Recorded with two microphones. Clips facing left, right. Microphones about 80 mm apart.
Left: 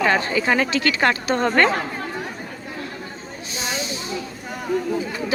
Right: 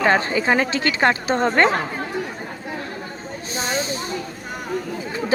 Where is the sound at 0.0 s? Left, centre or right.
Right.